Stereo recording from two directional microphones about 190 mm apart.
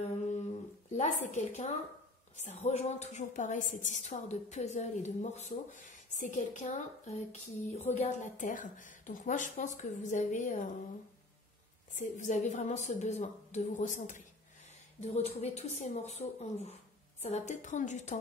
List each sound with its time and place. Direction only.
0.0 s a sound: 35° left (ahead or behind)
0.9 s a woman's voice: 35° left (ahead or behind)
11.9 s a woman's voice: 40° left (ahead or behind)